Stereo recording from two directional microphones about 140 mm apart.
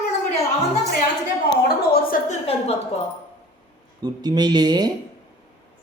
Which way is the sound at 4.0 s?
30° right (ahead or behind).